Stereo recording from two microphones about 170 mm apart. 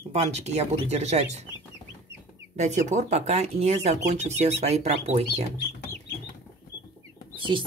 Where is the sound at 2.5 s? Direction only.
45° right (ahead or behind).